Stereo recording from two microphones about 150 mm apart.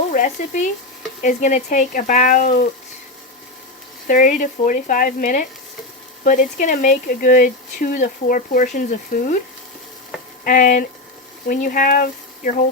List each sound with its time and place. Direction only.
0.1 s speech: 60° left (ahead or behind)
4.1 s speech: 60° left (ahead or behind)
10.4 s speech: 65° left (ahead or behind)